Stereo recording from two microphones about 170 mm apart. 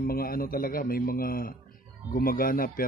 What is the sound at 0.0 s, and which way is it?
Speech, 60° left (ahead or behind).